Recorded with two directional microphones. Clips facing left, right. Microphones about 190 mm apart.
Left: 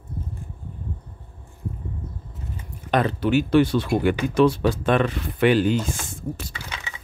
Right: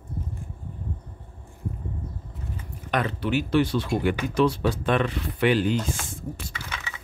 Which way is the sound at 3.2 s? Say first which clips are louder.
Left 4 dB; 50° left (ahead or behind).